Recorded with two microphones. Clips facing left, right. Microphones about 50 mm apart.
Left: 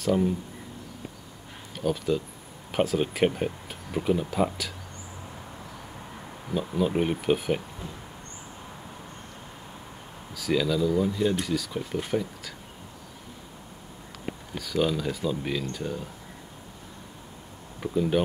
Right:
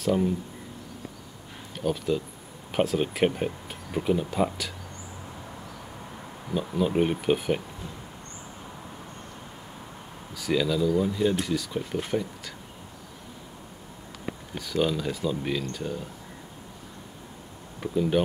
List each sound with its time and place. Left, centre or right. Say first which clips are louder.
0.0 s speech: even; centre
1.8 s speech: even; centre
6.5 s speech: even; centre
10.3 s speech: even; centre
14.6 s speech: even; centre
17.7 s speech: even; centre